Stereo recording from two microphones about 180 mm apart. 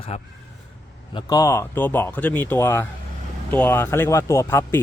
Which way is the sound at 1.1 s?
20° left (ahead or behind).